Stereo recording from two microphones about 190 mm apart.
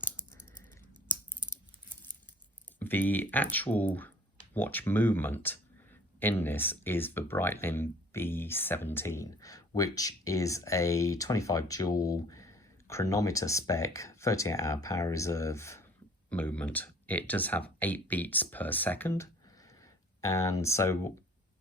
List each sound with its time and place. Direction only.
2.7 s speech: 10° left (ahead or behind)